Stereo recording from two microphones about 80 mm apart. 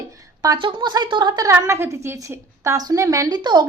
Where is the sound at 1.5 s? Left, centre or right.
Right.